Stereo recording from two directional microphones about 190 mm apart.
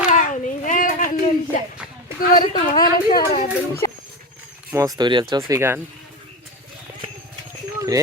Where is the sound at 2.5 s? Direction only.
20° left (ahead or behind).